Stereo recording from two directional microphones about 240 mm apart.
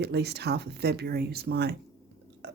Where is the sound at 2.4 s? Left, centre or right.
Right.